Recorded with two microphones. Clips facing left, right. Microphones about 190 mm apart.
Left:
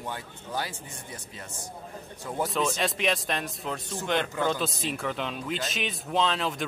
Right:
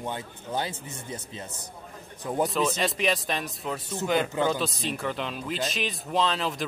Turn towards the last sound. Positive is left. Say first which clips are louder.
# even
turn(degrees=0)  # may be behind; listen again after turning